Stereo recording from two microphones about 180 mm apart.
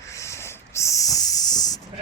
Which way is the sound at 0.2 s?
15° left (ahead or behind).